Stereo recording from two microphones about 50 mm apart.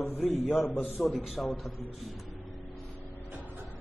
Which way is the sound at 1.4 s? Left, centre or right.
Centre.